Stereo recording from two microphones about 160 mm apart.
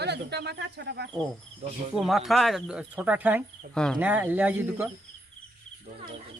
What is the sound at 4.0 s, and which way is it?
Speech, 10° right (ahead or behind).